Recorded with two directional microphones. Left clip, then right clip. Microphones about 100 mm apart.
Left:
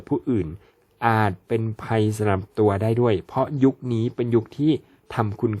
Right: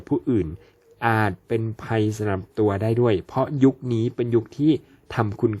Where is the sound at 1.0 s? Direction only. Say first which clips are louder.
Left 1 dB; 15° left (ahead or behind).